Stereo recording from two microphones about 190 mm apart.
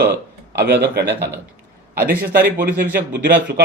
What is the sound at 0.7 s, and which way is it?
A man's voice, 60° right (ahead or behind).